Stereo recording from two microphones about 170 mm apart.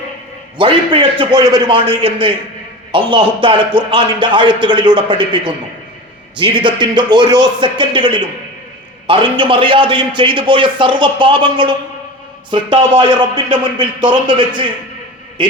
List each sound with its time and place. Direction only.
0.6 s a man's voice: 30° right (ahead or behind)